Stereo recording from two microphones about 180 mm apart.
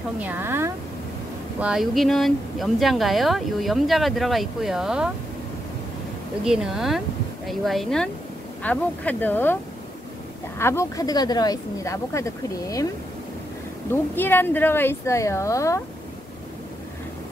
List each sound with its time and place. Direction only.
0.2 s a woman's voice: 10° right (ahead or behind)
1.6 s speech: 5° right (ahead or behind)
6.4 s speech: 5° right (ahead or behind)
10.6 s speech: 15° left (ahead or behind)
14.1 s speech: 10° left (ahead or behind)